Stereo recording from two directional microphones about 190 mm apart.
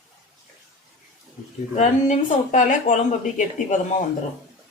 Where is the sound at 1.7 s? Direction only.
40° left (ahead or behind).